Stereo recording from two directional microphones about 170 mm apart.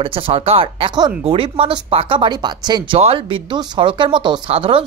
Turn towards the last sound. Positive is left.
turn(degrees=-35)  # may be behind; listen again after turning